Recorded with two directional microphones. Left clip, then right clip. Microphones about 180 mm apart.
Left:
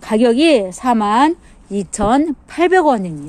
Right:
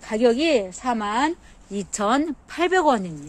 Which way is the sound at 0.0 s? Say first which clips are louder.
Left 7 dB; 45° left (ahead or behind).